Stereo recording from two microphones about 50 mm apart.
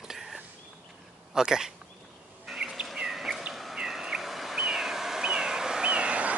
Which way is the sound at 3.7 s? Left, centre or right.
Centre.